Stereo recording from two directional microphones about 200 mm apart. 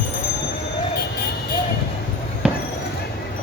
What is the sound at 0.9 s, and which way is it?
Vehicle, 50° left (ahead or behind).